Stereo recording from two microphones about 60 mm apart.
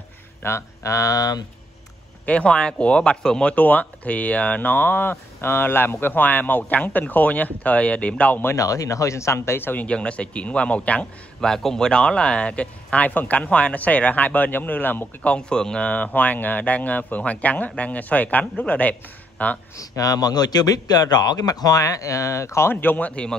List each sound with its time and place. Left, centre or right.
0.4 s speech: left
2.2 s speech: centre
3.5 s speech: left
8.5 s speech: left
9.8 s speech: centre
11.4 s speech: centre; by 15.3 s left
15.3 s speech: centre
19.8 s speech: left
22.7 s speech: left